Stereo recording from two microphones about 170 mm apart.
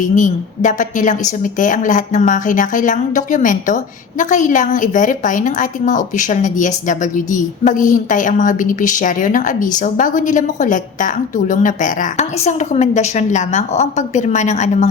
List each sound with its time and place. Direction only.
0.0 s a woman's voice: 45° left (ahead or behind)